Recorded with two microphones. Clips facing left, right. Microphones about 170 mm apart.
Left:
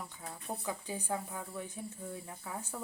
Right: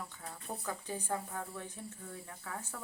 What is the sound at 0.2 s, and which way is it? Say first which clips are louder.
Cricket: left 2 dB; 15° left (ahead or behind).